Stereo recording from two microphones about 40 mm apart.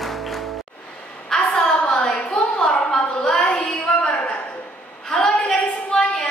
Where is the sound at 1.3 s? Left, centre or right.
Centre.